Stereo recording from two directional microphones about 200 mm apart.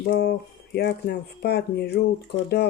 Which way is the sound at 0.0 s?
55° left (ahead or behind).